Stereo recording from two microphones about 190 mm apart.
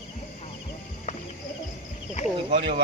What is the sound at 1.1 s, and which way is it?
Music, 40° left (ahead or behind).